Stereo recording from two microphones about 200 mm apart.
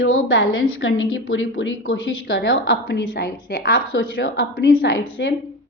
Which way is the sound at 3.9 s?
65° left (ahead or behind).